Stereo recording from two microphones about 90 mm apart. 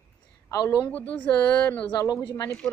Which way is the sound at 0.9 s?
15° left (ahead or behind).